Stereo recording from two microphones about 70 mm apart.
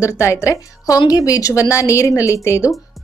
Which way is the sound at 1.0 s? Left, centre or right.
Left.